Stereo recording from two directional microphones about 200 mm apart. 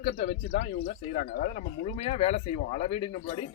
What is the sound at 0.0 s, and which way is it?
Speech, 40° left (ahead or behind).